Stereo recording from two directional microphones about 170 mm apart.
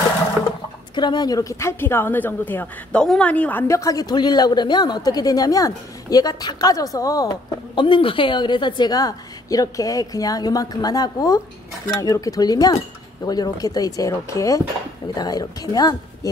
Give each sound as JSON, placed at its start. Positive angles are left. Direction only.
{"t": 0.9, "sound": "speech", "side_deg": 25}